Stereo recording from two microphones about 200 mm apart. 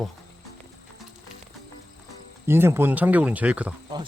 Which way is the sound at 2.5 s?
10° right (ahead or behind).